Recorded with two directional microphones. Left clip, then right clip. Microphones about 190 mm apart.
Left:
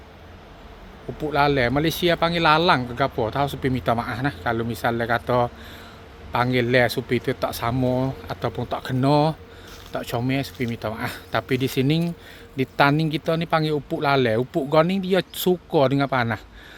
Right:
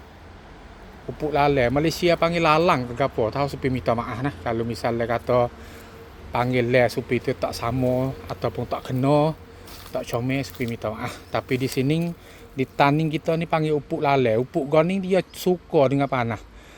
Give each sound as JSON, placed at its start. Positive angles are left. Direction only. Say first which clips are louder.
{"t": 1.2, "sound": "speech", "louder": "even", "side_deg": 10}